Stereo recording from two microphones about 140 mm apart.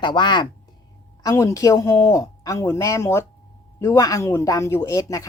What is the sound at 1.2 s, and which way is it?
Speech, 20° left (ahead or behind).